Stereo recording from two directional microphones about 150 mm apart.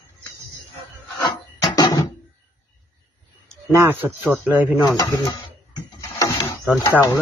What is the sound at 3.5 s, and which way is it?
Speech, 20° right (ahead or behind).